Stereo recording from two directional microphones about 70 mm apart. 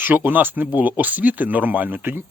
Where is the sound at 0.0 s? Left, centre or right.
Right.